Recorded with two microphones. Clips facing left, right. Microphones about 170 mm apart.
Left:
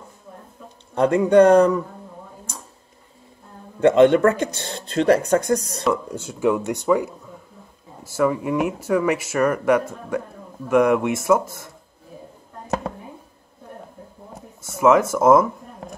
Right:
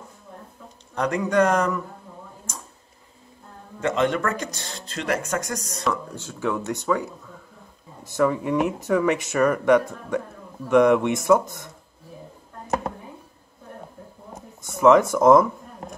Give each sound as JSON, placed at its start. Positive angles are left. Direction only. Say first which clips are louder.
{"t": 0.9, "sound": "speech", "louder": "left 7 dB", "side_deg": 30}
{"t": 3.8, "sound": "speech", "louder": "left 9 dB", "side_deg": 30}
{"t": 6.1, "sound": "speech", "louder": "left 6 dB", "side_deg": 15}
{"t": 14.3, "sound": "speech", "louder": "right 1 dB", "side_deg": 5}